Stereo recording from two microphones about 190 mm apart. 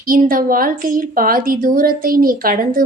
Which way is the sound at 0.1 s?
50° right (ahead or behind).